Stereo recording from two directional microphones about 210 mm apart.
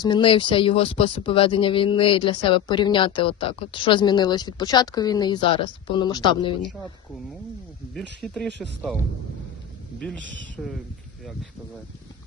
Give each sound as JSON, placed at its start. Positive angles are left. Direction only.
{"t": 0.0, "sound": "speech", "side_deg": 20}
{"t": 7.9, "sound": "speech", "side_deg": 5}
{"t": 10.6, "sound": "speech", "side_deg": 0}